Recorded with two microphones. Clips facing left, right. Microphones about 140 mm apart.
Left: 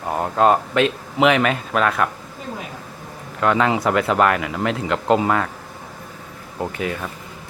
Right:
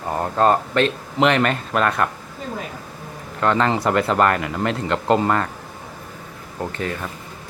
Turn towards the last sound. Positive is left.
turn(degrees=10)  # may be behind; listen again after turning